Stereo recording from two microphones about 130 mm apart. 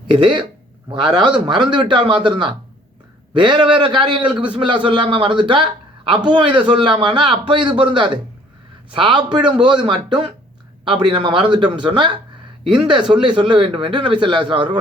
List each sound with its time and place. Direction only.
0.1 s a man's voice: 40° right (ahead or behind)
13.1 s a man's voice: 40° right (ahead or behind)